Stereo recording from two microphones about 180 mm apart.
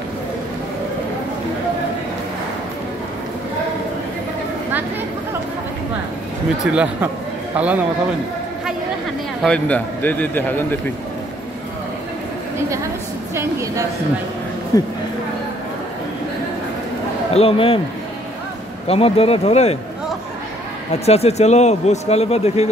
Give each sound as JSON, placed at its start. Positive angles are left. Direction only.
{"t": 6.6, "sound": "a woman's voice", "side_deg": -5}
{"t": 9.4, "sound": "speech", "side_deg": 5}
{"t": 13.3, "sound": "a woman's voice", "side_deg": -15}
{"t": 14.7, "sound": "speech", "side_deg": 20}
{"t": 17.3, "sound": "speech", "side_deg": 35}
{"t": 18.9, "sound": "speech", "side_deg": 35}
{"t": 20.9, "sound": "speech", "side_deg": 35}